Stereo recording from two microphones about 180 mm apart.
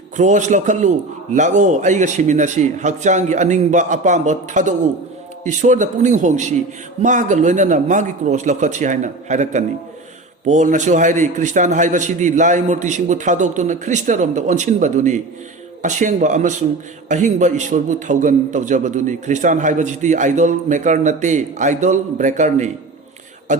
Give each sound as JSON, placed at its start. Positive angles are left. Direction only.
{"t": 0.2, "sound": "a man's voice", "side_deg": -40}